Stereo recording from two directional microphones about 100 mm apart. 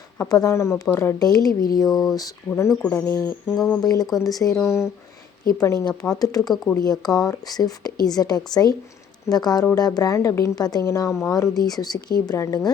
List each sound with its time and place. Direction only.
0.2 s speech: 35° left (ahead or behind)
1.2 s a woman's voice: 40° left (ahead or behind)
1.9 s speech: centre (ahead or behind)
2.1 s a woman's voice: 35° left (ahead or behind)
3.5 s speech: centre (ahead or behind)
3.8 s a woman's voice: 40° left (ahead or behind)
4.6 s a woman's voice: 25° left (ahead or behind)